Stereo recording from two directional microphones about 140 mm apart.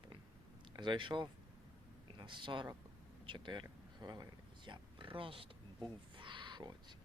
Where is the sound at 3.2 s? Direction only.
35° right (ahead or behind).